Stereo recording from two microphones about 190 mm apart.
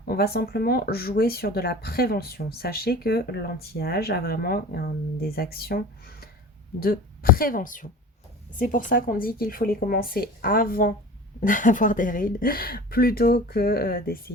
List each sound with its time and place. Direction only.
0.1 s speech: 55° left (ahead or behind)